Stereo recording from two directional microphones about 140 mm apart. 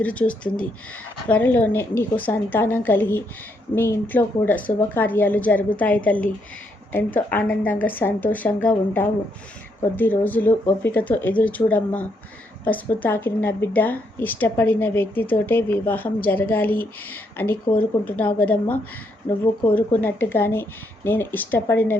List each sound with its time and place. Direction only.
0.0 s a woman's voice: 10° left (ahead or behind)